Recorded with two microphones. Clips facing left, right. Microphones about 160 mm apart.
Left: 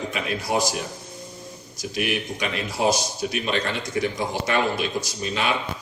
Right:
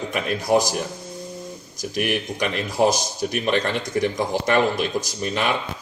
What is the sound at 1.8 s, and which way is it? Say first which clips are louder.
A man's voice: right 2 dB; 45° right (ahead or behind).